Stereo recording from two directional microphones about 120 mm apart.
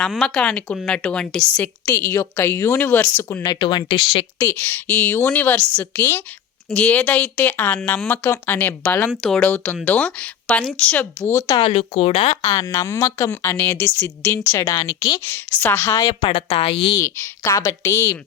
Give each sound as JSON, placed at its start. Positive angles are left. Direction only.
{"t": 0.0, "sound": "a woman's voice", "side_deg": 0}
{"t": 3.4, "sound": "speech", "side_deg": 35}
{"t": 4.4, "sound": "speech", "side_deg": 15}
{"t": 9.0, "sound": "speech", "side_deg": 0}
{"t": 11.3, "sound": "a woman's voice", "side_deg": 25}
{"t": 11.6, "sound": "speech", "side_deg": 60}
{"t": 12.4, "sound": "a woman's voice", "side_deg": 30}
{"t": 15.6, "sound": "a woman's voice", "side_deg": 20}
{"t": 16.2, "sound": "a woman's voice", "side_deg": 45}
{"t": 16.9, "sound": "a woman's voice", "side_deg": 25}